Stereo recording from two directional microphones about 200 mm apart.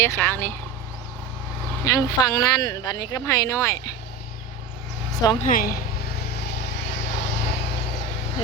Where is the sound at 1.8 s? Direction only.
15° left (ahead or behind).